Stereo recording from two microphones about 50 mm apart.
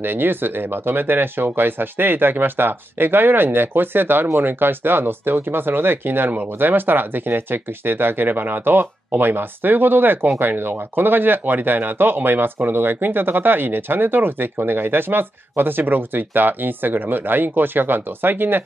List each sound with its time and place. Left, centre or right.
0.0 s speech: right